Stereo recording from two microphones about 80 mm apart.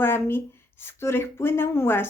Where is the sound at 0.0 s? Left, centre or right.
Left.